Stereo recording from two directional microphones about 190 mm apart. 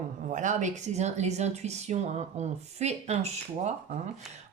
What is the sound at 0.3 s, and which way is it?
Speech, 40° right (ahead or behind).